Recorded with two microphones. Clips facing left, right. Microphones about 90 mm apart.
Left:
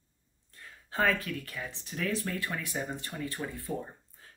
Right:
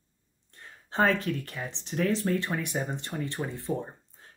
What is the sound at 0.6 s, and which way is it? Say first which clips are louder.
Speech: right 4 dB; 25° right (ahead or behind).